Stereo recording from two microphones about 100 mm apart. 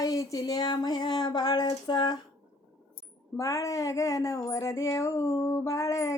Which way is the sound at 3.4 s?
30° left (ahead or behind).